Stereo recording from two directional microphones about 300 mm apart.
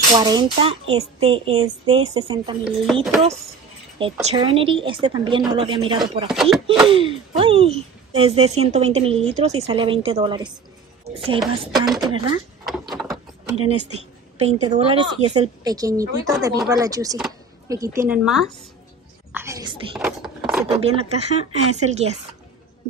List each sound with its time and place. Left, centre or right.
0.1 s a woman's voice: centre
2.9 s speech: centre
4.0 s a woman's voice: centre
6.2 s speech: centre
6.9 s speech: centre
11.6 s a woman's voice: centre
20.0 s a sound: centre
20.7 s speech: centre